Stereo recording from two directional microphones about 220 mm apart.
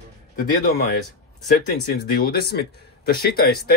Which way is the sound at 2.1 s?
45° left (ahead or behind).